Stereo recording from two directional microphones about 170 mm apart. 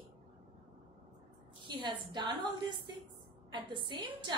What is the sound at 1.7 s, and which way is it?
A woman's voice, 25° right (ahead or behind).